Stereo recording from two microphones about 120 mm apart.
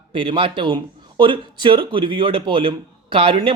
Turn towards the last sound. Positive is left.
turn(degrees=-50)  # may be behind; listen again after turning